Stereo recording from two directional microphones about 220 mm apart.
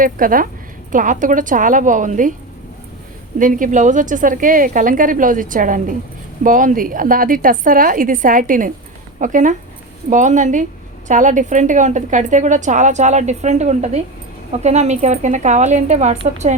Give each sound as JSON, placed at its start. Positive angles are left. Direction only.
{"t": 0.0, "sound": "a woman's voice", "side_deg": -40}
{"t": 3.3, "sound": "a woman's voice", "side_deg": -35}